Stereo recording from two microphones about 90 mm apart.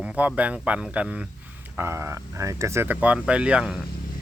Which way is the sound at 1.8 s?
25° right (ahead or behind).